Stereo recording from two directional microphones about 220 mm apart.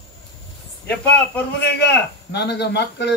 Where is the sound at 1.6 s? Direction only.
50° left (ahead or behind).